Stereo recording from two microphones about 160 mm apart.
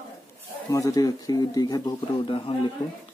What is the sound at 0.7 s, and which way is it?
Speech, 20° left (ahead or behind).